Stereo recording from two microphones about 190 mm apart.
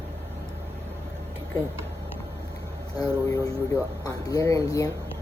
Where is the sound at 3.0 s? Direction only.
20° left (ahead or behind).